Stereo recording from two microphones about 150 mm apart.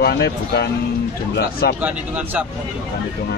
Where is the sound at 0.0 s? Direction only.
90° left.